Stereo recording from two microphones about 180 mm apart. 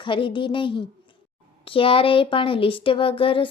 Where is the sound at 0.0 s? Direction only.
25° left (ahead or behind).